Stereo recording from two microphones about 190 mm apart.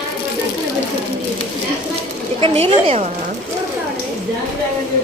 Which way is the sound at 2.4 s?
30° right (ahead or behind).